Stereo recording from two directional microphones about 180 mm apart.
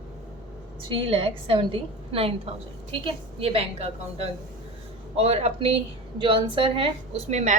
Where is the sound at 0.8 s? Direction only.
30° right (ahead or behind).